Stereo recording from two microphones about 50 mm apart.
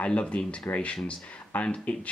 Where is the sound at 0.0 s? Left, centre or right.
Left.